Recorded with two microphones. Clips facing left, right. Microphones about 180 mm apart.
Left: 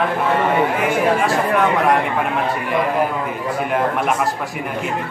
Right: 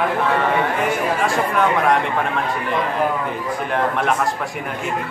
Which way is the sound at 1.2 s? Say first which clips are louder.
Left 2 dB; centre (ahead or behind).